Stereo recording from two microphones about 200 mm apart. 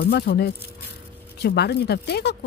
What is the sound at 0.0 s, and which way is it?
Speech, 55° left (ahead or behind).